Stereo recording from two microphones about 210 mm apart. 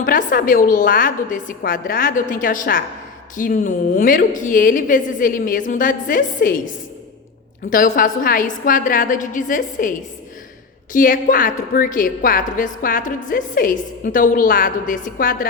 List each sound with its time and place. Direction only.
0.0 s a woman's voice: 40° left (ahead or behind)
7.7 s a woman's voice: 40° left (ahead or behind)
10.9 s a woman's voice: 40° left (ahead or behind)